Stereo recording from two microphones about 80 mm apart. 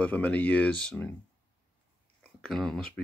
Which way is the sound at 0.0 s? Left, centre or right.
Centre.